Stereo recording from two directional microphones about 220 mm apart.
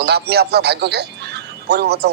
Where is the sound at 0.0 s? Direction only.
50° right (ahead or behind).